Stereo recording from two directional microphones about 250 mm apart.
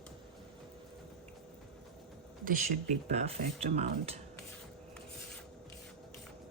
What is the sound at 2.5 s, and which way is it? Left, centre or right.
Speech, right.